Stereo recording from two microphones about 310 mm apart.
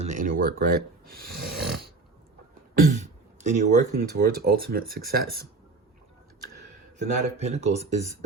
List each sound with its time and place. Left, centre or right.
0.0 s speech: right
2.7 s speech: right
7.0 s speech: right